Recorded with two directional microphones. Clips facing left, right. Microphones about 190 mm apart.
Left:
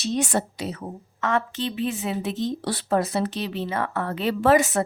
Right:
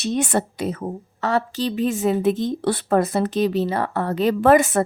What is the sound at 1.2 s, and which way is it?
Speech, 35° right (ahead or behind).